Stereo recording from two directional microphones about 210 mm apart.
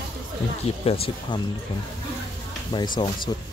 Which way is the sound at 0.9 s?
30° left (ahead or behind).